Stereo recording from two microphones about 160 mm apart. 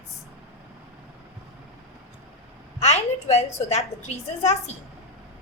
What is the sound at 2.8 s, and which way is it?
A woman's voice, 45° left (ahead or behind).